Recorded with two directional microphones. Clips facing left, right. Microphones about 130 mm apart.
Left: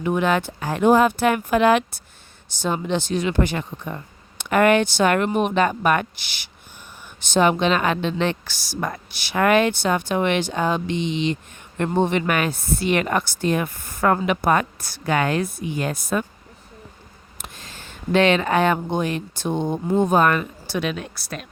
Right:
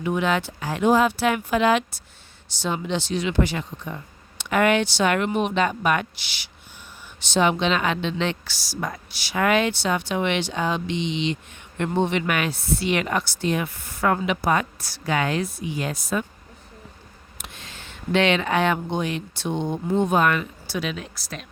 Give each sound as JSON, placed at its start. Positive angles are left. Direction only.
{"t": 0.0, "sound": "speech", "side_deg": 50}
{"t": 17.3, "sound": "speech", "side_deg": 40}